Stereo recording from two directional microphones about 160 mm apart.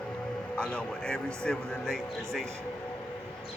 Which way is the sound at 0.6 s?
5° left (ahead or behind).